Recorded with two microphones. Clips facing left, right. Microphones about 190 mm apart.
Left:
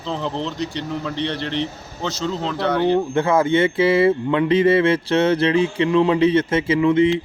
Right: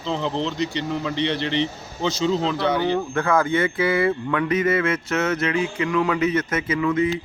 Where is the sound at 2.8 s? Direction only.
30° left (ahead or behind).